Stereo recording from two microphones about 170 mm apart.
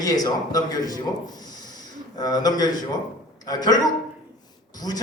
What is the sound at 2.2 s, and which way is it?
A man's voice, 25° left (ahead or behind).